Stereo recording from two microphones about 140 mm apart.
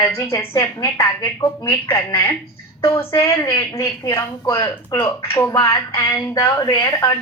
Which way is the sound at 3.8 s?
20° left (ahead or behind).